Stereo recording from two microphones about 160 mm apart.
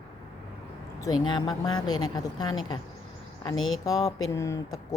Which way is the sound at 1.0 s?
25° left (ahead or behind).